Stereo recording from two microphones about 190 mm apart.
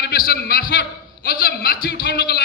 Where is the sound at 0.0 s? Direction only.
50° left (ahead or behind).